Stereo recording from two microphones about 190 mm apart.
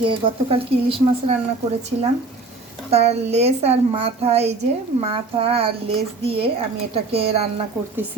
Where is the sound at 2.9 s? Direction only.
35° right (ahead or behind).